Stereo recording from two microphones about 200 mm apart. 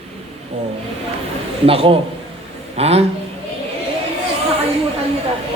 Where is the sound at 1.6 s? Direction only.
30° right (ahead or behind).